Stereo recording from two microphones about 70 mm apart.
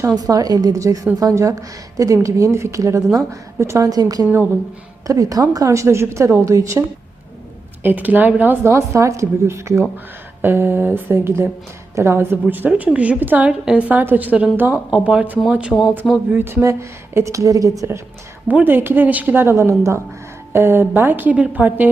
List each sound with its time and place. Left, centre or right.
0.3 s a woman's voice: right
3.8 s a woman's voice: right
7.8 s a woman's voice: right
8.6 s a woman's voice: right
10.4 s a woman's voice: right
14.8 s a woman's voice: centre
16.3 s speech: right
17.2 s a woman's voice: right
18.4 s a woman's voice: right